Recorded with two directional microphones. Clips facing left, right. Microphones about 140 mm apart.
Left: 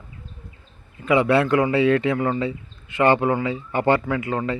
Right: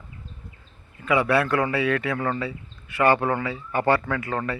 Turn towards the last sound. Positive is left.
turn(degrees=20)  # may be behind; listen again after turning